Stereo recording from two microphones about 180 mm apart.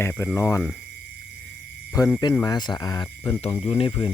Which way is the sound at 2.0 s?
20° left (ahead or behind).